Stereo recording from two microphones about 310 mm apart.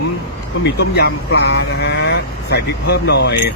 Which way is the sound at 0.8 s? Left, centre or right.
Left.